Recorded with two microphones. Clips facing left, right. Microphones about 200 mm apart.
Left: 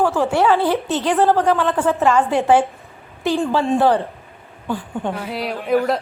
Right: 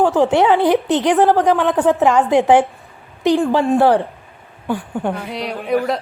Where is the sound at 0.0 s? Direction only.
15° right (ahead or behind).